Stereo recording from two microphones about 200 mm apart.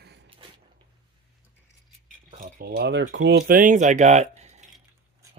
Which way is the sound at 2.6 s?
55° right (ahead or behind).